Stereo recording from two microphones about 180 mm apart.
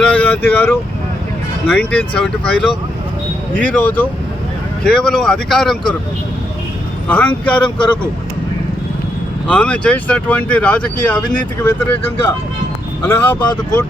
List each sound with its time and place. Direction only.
0.0 s vehicle: 10° left (ahead or behind)
1.7 s speech: 5° left (ahead or behind)
7.1 s speech: 10° left (ahead or behind)
9.5 s speech: 5° left (ahead or behind)
13.4 s speech: 25° left (ahead or behind)